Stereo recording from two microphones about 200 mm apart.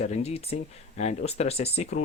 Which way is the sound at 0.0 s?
35° left (ahead or behind).